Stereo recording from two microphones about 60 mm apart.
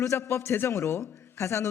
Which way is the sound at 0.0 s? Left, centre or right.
Left.